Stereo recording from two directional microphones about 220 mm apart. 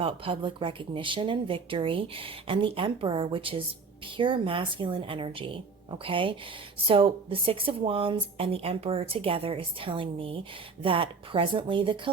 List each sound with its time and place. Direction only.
0.0 s speech: 25° right (ahead or behind)